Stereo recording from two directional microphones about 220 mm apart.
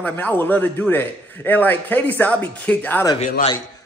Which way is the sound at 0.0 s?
10° left (ahead or behind).